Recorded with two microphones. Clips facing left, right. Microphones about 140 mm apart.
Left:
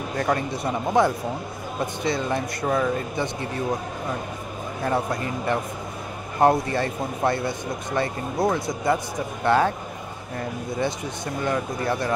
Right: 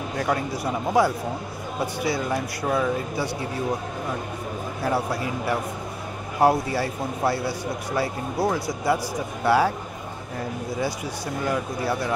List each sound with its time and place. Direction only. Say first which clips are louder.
0.2 s speech: left 1 dB; 5° right (ahead or behind)
4.8 s speech: even; 5° right (ahead or behind)
11.4 s speech: left 1 dB; 5° right (ahead or behind)